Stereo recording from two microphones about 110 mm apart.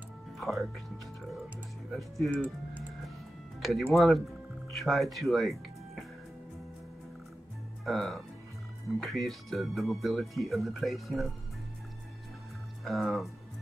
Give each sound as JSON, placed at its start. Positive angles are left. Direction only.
{"t": 0.4, "sound": "speech", "side_deg": 0}
{"t": 1.9, "sound": "speech", "side_deg": 0}
{"t": 2.3, "sound": "speech", "side_deg": -15}
{"t": 3.9, "sound": "speech", "side_deg": 0}
{"t": 7.8, "sound": "speech", "side_deg": 0}
{"t": 12.8, "sound": "speech", "side_deg": 0}